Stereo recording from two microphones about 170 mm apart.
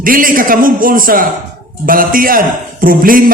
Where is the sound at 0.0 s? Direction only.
55° right (ahead or behind).